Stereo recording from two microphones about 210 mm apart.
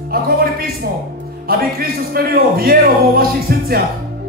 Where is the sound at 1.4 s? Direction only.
45° right (ahead or behind).